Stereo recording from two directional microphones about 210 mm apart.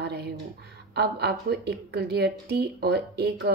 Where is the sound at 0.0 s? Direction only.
50° right (ahead or behind).